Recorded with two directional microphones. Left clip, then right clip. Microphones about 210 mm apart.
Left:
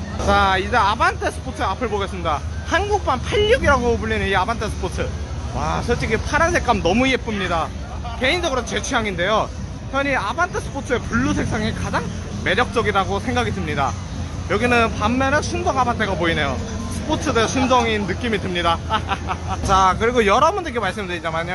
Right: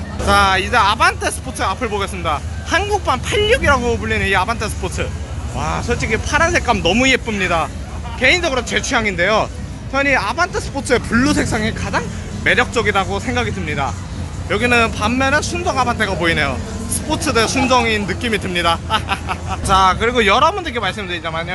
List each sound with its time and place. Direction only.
0.3 s speech: 5° left (ahead or behind); by 10.6 s 10° right (ahead or behind)
10.9 s speech: 20° right (ahead or behind)
11.6 s speech: 5° right (ahead or behind); by 21.5 s 10° left (ahead or behind)